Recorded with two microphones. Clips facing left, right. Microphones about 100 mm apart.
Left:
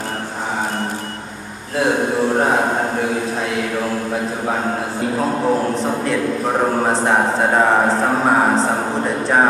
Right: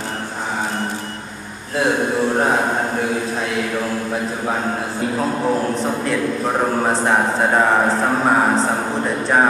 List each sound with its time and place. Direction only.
5.4 s a man's voice: 15° left (ahead or behind)
6.8 s speech: 30° left (ahead or behind)
9.0 s speech: 45° left (ahead or behind)